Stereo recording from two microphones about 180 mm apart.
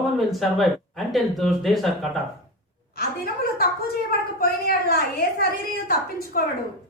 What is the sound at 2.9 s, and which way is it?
A woman's voice, 55° left (ahead or behind).